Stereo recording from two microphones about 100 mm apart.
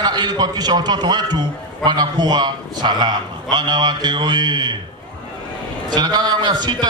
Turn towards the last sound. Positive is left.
turn(degrees=-45)  # may be behind; listen again after turning